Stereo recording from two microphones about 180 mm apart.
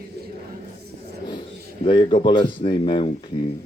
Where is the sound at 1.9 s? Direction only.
25° left (ahead or behind).